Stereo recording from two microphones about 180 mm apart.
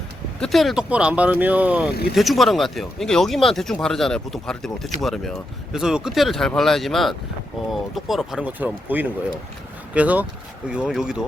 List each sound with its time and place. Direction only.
0.3 s speech: centre (ahead or behind)